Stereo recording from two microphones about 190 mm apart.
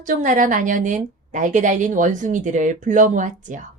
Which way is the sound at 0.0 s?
40° right (ahead or behind).